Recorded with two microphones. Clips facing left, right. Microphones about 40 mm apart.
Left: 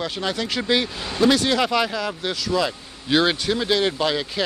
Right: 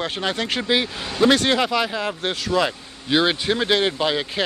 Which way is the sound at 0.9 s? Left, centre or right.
Right.